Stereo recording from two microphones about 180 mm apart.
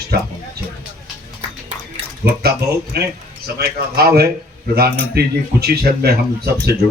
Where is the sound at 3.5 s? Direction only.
60° right (ahead or behind).